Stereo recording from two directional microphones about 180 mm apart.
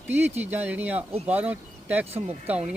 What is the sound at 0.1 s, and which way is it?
Speech, 10° right (ahead or behind).